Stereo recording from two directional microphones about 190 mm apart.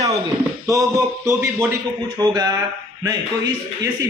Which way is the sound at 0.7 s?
15° right (ahead or behind).